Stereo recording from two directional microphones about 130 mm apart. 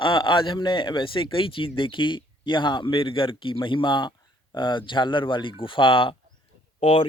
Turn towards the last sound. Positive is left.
turn(degrees=55)  # may be behind; listen again after turning